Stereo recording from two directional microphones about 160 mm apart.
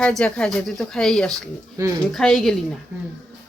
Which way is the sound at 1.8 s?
20° right (ahead or behind).